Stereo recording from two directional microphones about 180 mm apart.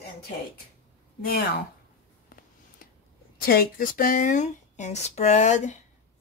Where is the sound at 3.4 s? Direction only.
55° left (ahead or behind).